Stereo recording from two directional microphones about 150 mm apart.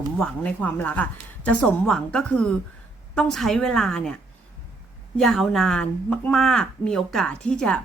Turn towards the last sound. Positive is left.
turn(degrees=5)  # may be behind; listen again after turning